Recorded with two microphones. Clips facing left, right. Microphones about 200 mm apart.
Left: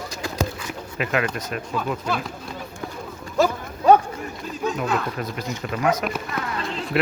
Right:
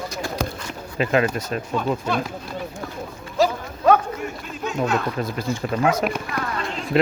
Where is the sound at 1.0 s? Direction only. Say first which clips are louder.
Right 4 dB; 30° right (ahead or behind).